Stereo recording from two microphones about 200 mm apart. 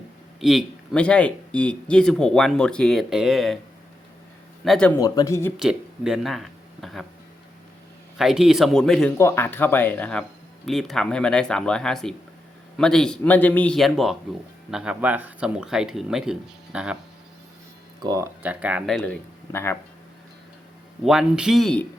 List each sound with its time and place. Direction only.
0.3 s speech: centre (ahead or behind)
4.6 s speech: 5° left (ahead or behind)
4.9 s speech: 15° left (ahead or behind)
5.5 s speech: 5° right (ahead or behind)
8.2 s speech: centre (ahead or behind)
18.0 s speech: 20° right (ahead or behind)
18.4 s speech: 5° right (ahead or behind)
21.0 s speech: centre (ahead or behind)